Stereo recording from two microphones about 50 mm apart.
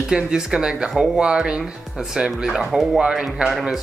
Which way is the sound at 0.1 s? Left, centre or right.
Centre.